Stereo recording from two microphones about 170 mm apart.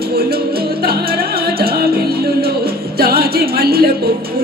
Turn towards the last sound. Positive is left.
turn(degrees=-65)  # may be behind; listen again after turning